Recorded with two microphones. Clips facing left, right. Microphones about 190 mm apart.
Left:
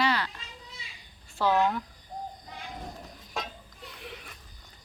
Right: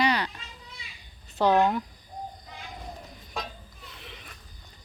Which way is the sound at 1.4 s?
20° right (ahead or behind).